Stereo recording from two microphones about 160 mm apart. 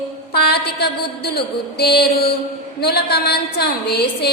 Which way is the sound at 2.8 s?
80° left.